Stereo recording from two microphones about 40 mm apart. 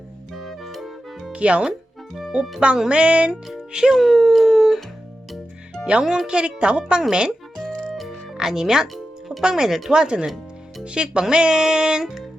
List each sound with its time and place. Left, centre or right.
0.3 s music: centre
1.3 s speech: right
2.9 s speech: right
3.7 s music: centre
3.9 s howl: centre
5.8 s speech: right
7.9 s music: centre
8.4 s speech: centre
9.9 s speech: right
10.2 s music: centre
10.8 s speech: right
12.0 s music: centre